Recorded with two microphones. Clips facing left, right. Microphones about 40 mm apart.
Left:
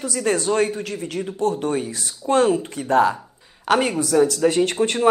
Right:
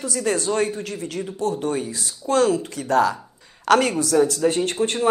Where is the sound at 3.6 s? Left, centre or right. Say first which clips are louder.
Right 2 dB; centre.